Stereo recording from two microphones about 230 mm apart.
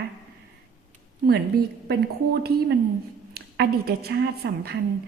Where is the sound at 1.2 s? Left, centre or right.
Right.